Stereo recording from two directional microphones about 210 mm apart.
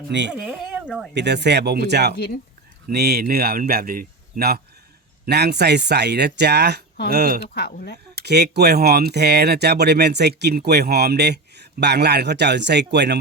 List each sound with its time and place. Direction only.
0.1 s speech: 55° right (ahead or behind)
0.3 s speech: 5° right (ahead or behind)
1.1 s speech: 55° right (ahead or behind)
2.1 s speech: 50° left (ahead or behind)
2.9 s speech: 50° right (ahead or behind)
7.5 s speech: 50° left (ahead or behind)
8.1 s speech: 50° right (ahead or behind)